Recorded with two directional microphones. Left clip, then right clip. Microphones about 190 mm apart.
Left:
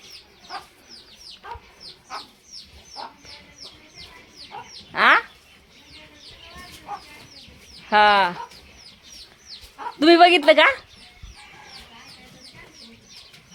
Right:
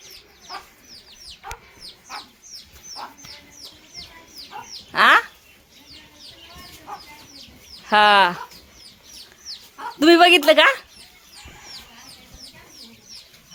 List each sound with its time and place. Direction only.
4.9 s chicken: 15° right (ahead or behind)
7.9 s speech: 15° right (ahead or behind)
10.0 s speech: 5° right (ahead or behind)